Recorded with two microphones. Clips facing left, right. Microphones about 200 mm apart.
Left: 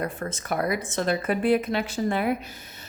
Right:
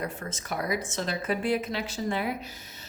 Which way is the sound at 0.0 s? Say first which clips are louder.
Left 4 dB; 55° left (ahead or behind).